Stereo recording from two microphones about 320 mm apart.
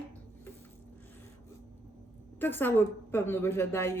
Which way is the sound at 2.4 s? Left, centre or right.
Centre.